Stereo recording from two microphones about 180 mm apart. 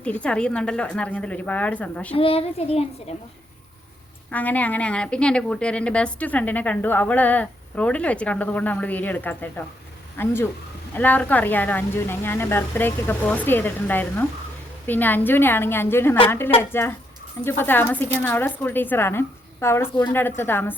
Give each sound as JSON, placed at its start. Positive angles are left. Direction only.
{"t": 0.0, "sound": "a woman's voice", "side_deg": 5}
{"t": 2.1, "sound": "a child's voice", "side_deg": 30}
{"t": 4.3, "sound": "a woman's voice", "side_deg": 10}